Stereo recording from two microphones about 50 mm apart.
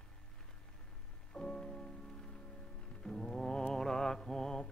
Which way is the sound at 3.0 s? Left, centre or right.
Centre.